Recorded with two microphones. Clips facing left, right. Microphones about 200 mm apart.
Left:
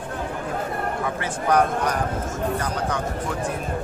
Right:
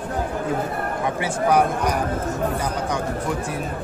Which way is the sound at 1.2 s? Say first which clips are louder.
Right 2 dB; 10° right (ahead or behind).